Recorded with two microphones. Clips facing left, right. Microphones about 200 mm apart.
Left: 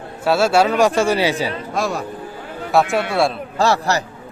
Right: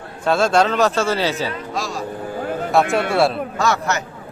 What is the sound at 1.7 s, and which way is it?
Speech, 60° left (ahead or behind).